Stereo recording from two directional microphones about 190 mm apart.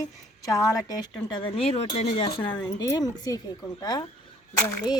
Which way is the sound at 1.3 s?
30° left (ahead or behind).